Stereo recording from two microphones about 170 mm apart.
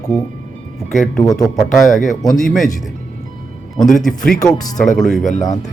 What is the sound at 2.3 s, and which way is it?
Speech, centre (ahead or behind).